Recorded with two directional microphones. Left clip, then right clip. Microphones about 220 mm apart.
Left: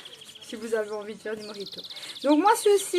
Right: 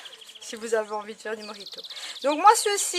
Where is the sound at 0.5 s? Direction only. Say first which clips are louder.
Right 2 dB; 45° right (ahead or behind).